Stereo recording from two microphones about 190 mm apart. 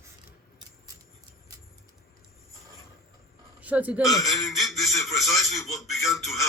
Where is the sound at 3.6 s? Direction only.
5° right (ahead or behind).